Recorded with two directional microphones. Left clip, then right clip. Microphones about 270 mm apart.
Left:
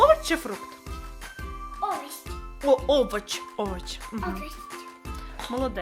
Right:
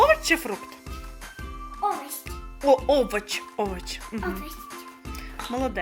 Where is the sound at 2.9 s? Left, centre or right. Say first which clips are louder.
Right 1 dB; centre.